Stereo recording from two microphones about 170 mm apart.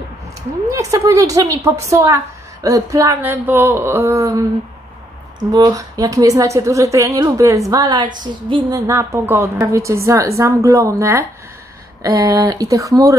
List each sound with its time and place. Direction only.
0.7 s a woman's voice: 20° right (ahead or behind)